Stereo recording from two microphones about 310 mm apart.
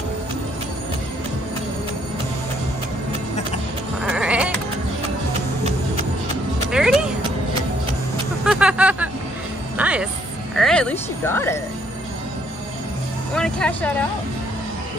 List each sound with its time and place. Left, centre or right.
4.0 s sheep: centre
6.7 s music: centre
8.5 s music: centre
13.3 s vehicle: centre